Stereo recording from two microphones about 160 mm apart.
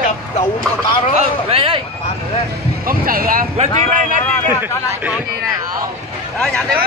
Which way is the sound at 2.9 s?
65° right (ahead or behind).